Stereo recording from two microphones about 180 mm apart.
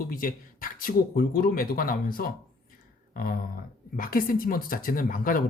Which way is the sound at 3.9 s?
50° left (ahead or behind).